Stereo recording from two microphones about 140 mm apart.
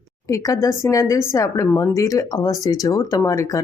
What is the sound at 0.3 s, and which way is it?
Speech, 25° left (ahead or behind).